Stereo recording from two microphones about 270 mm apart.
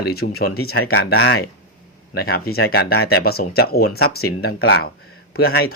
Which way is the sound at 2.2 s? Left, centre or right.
Left.